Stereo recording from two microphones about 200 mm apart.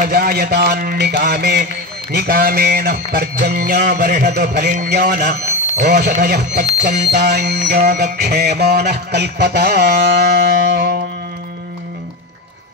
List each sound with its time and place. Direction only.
0.0 s music: 50° right (ahead or behind)
6.2 s speech: 55° right (ahead or behind)